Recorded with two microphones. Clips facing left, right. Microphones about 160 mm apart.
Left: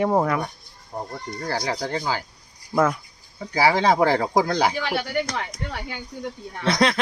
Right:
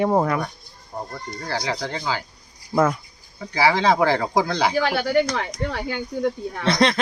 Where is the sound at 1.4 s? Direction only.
45° left (ahead or behind).